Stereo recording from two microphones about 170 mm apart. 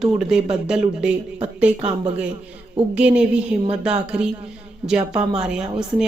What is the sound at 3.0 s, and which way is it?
A woman's voice, 5° right (ahead or behind).